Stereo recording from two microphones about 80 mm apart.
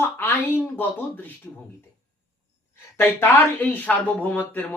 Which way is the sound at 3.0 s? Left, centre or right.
Left.